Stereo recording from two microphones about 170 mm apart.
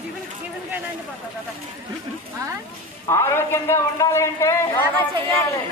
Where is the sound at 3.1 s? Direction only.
15° left (ahead or behind).